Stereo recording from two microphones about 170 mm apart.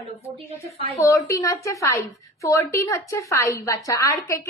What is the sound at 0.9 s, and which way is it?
A woman's voice, 20° left (ahead or behind).